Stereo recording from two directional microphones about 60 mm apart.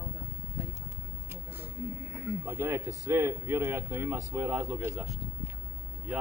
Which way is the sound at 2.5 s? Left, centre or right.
Right.